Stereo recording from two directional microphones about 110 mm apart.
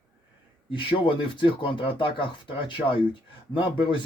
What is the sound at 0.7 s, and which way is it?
Speech, 50° left (ahead or behind).